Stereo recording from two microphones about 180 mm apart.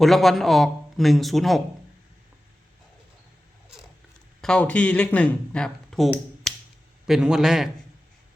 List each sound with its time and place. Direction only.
0.0 s speech: centre (ahead or behind)
4.4 s speech: 5° left (ahead or behind)